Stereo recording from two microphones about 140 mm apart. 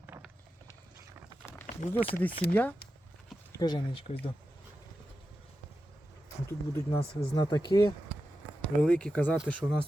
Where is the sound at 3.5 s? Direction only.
30° left (ahead or behind).